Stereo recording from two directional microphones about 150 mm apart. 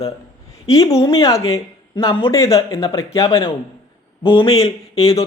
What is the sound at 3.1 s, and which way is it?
Speech, 30° left (ahead or behind).